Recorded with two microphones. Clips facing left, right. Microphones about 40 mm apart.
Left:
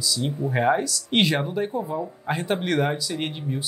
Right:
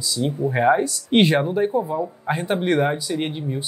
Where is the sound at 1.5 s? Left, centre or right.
Centre.